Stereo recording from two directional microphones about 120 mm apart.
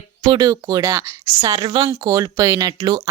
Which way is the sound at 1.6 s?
40° right (ahead or behind).